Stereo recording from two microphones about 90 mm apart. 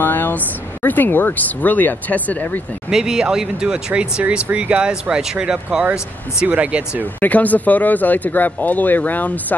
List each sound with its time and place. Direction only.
0.0 s a sound: 20° left (ahead or behind)
0.8 s speech: 20° left (ahead or behind)
2.9 s speech: 5° right (ahead or behind)
7.2 s speech: 20° left (ahead or behind)